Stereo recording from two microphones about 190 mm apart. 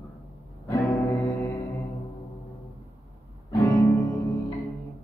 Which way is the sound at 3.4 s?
15° left (ahead or behind).